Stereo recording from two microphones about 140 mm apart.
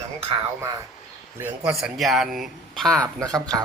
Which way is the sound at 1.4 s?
15° right (ahead or behind).